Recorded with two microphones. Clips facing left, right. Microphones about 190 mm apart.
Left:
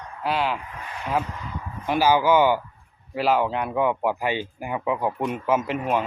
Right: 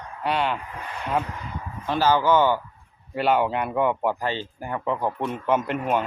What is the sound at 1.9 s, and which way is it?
Speech, 10° left (ahead or behind).